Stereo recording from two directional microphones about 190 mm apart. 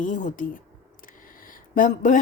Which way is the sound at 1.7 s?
45° left (ahead or behind).